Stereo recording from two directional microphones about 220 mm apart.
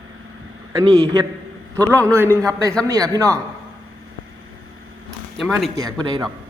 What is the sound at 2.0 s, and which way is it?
Speech, 10° right (ahead or behind).